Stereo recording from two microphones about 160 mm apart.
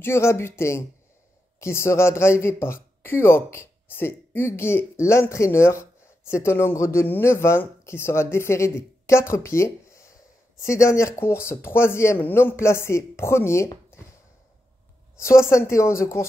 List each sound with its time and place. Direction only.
0.0 s speech: 15° left (ahead or behind)
15.4 s speech: 15° left (ahead or behind)